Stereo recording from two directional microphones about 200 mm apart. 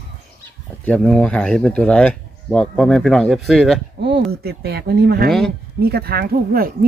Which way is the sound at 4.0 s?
60° right (ahead or behind).